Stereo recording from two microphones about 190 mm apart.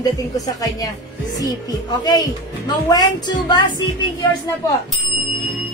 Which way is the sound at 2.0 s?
20° left (ahead or behind).